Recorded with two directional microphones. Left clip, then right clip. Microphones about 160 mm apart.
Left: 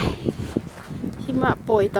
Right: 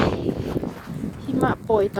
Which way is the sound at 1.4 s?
15° left (ahead or behind).